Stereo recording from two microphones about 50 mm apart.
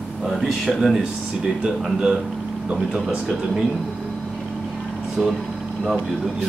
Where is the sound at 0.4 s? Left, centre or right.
Centre.